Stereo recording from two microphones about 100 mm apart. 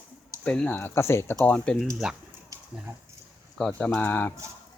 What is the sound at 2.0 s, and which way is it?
Speech, 5° right (ahead or behind).